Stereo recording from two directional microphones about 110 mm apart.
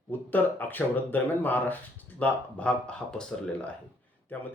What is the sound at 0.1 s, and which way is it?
Speech, 15° left (ahead or behind).